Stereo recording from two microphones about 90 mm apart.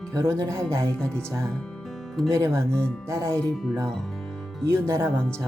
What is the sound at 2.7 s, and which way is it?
Speech, 10° left (ahead or behind).